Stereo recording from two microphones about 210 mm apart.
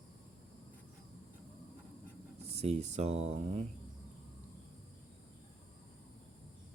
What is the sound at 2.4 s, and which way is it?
Speech, 30° right (ahead or behind).